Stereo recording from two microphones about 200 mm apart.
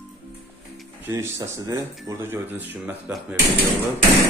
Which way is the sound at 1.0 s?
15° right (ahead or behind).